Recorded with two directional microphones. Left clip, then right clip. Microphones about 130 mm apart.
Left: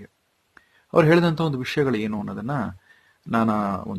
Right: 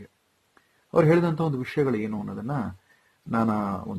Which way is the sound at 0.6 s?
35° left (ahead or behind).